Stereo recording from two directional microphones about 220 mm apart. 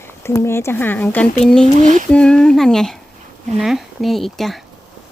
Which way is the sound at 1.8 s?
35° right (ahead or behind).